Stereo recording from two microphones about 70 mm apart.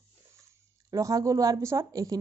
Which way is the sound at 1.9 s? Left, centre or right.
Right.